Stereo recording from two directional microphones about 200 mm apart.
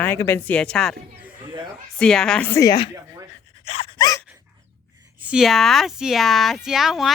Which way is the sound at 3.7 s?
30° left (ahead or behind).